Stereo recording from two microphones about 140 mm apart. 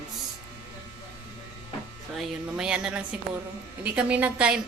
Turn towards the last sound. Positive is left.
turn(degrees=-10)  # may be behind; listen again after turning